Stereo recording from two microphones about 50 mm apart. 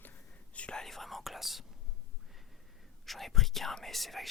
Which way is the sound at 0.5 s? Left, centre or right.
Left.